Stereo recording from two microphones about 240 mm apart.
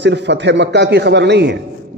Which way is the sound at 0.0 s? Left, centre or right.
Right.